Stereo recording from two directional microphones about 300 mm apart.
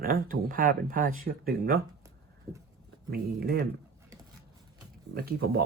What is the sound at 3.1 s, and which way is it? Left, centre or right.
Speech, right.